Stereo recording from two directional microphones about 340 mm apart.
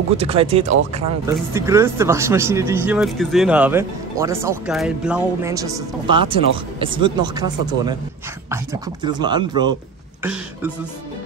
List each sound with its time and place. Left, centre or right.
0.2 s speech: centre
9.0 s speech: centre